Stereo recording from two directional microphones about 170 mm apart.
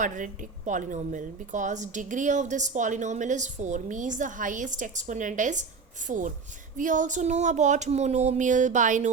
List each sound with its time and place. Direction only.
0.0 s speech: 50° right (ahead or behind)